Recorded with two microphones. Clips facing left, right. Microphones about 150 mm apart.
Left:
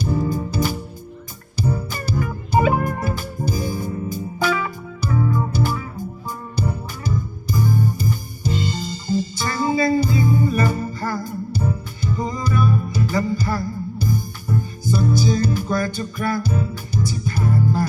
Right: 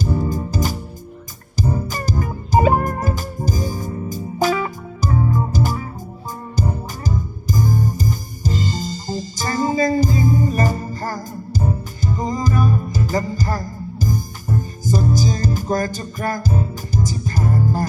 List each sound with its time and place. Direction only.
0.3 s music: 40° right (ahead or behind)